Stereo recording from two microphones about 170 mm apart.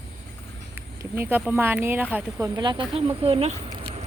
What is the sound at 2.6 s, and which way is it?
Speech, 25° right (ahead or behind).